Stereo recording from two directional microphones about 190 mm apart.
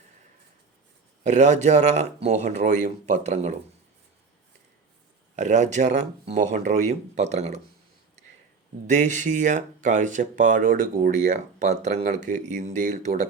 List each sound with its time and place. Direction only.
1.2 s speech: 35° right (ahead or behind)
5.4 s speech: 40° right (ahead or behind)
8.9 s speech: 40° right (ahead or behind)